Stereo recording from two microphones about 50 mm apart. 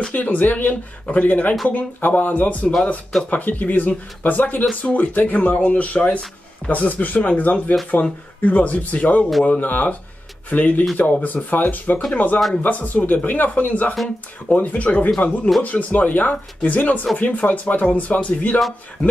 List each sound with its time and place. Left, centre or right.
0.1 s speech: left